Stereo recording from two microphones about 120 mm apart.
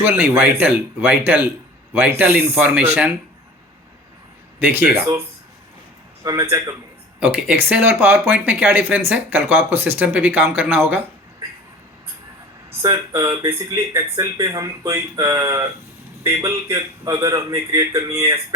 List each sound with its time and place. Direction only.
0.0 s speech: 15° right (ahead or behind)
4.6 s a man's voice: 15° right (ahead or behind)
6.2 s a man's voice: 25° right (ahead or behind)
7.2 s speech: 10° right (ahead or behind)
12.8 s a man's voice: 35° right (ahead or behind)